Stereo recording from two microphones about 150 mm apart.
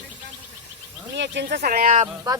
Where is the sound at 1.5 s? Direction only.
70° right (ahead or behind).